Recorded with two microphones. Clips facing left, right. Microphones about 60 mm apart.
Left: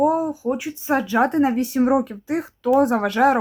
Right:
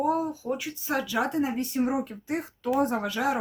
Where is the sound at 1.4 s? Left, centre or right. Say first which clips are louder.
Left 8 dB; left.